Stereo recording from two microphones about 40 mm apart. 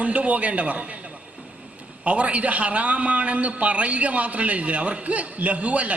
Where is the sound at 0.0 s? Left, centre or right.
Right.